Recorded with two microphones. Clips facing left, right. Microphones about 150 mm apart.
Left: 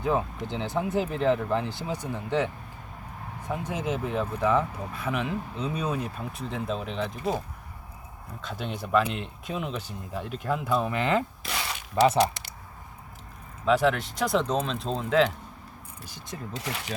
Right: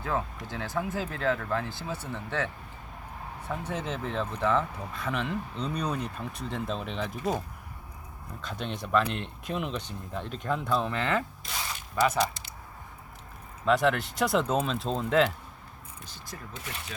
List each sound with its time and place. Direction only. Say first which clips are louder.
0.0 s speech: left 5 dB; 20° left (ahead or behind)
3.5 s speech: left 4 dB; 10° left (ahead or behind)
8.4 s speech: left 1 dB; centre (ahead or behind); by 11.3 s 15° left (ahead or behind)
11.4 s a sound: left 4 dB; 75° left (ahead or behind)
12.1 s speech: left 5 dB; 70° left (ahead or behind)
13.7 s speech: left 2 dB; centre (ahead or behind)
16.2 s speech: left 6 dB; 25° left (ahead or behind)
16.6 s speech: left 7 dB; 90° left